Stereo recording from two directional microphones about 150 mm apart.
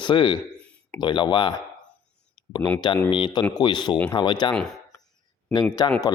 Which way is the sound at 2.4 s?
30° left (ahead or behind).